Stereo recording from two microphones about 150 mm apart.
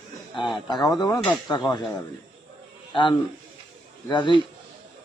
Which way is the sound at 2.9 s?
35° left (ahead or behind).